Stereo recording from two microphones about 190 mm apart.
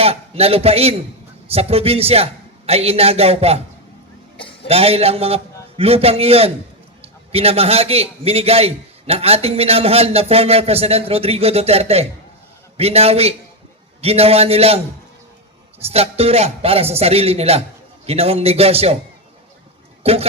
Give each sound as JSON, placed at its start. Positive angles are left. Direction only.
{"t": 0.0, "sound": "a man's voice", "side_deg": -30}
{"t": 4.7, "sound": "a man's voice", "side_deg": -30}
{"t": 15.9, "sound": "a man's voice", "side_deg": -30}
{"t": 20.0, "sound": "speech", "side_deg": -30}